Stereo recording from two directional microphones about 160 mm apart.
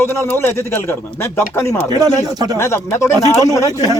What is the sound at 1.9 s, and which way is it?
Speech, 25° right (ahead or behind).